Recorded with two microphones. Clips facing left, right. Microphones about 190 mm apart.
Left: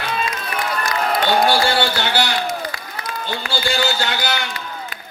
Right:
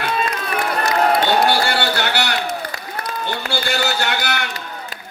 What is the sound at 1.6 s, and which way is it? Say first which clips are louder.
A man's voice: left 1 dB; 60° right (ahead or behind).